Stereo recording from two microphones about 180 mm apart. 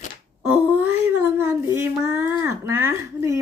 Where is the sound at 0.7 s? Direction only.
10° right (ahead or behind).